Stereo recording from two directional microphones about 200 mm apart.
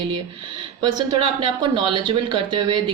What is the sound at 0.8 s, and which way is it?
A woman's voice, 20° right (ahead or behind).